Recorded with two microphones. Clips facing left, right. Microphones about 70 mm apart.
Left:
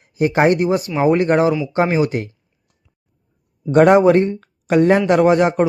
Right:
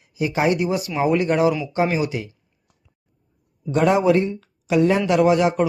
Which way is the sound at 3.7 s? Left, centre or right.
Left.